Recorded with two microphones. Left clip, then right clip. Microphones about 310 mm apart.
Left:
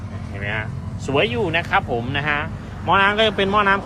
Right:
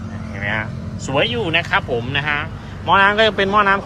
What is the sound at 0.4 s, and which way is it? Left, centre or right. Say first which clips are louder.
Speech: right 4 dB; centre.